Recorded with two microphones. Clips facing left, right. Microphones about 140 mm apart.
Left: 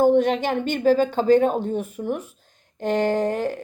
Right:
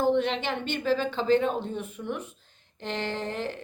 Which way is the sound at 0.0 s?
45° left (ahead or behind).